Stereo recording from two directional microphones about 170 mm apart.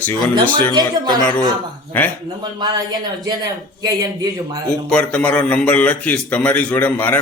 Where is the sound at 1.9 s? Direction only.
10° left (ahead or behind).